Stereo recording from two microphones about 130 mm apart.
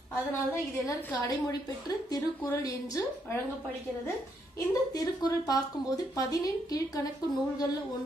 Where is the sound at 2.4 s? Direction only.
25° left (ahead or behind).